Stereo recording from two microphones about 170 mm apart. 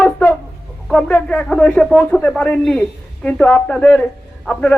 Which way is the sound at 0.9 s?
5° left (ahead or behind).